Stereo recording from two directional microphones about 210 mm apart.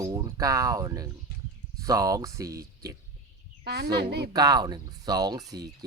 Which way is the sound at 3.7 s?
50° right (ahead or behind).